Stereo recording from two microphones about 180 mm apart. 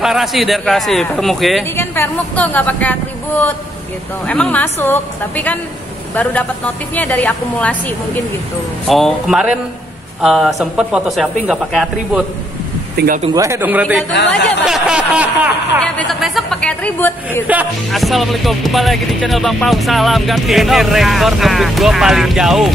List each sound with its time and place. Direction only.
0.0 s speech: centre (ahead or behind)
1.6 s a woman's voice: 10° left (ahead or behind)
12.9 s speech: 55° right (ahead or behind)
13.3 s a man's voice: 15° right (ahead or behind); by 17.1 s 5° left (ahead or behind)
17.3 s speech: 10° right (ahead or behind)